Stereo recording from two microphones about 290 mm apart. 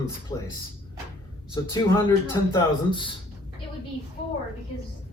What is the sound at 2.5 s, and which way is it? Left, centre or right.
Speech, centre.